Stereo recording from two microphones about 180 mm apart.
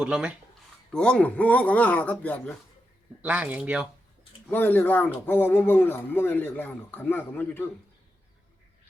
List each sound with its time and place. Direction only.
0.0 s speech: 5° right (ahead or behind)
0.9 s speech: 5° left (ahead or behind)
3.2 s speech: 5° right (ahead or behind)
4.4 s speech: 10° left (ahead or behind)